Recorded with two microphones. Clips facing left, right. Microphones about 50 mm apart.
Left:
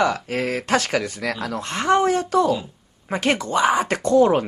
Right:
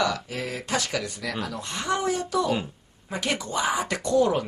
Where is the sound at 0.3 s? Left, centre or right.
Left.